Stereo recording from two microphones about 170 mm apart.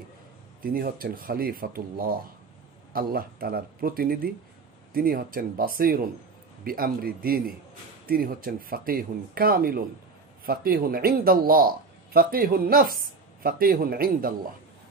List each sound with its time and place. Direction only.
0.7 s a man's voice: 60° right (ahead or behind)